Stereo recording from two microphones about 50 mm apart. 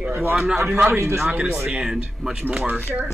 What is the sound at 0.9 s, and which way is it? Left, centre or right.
Speech, right.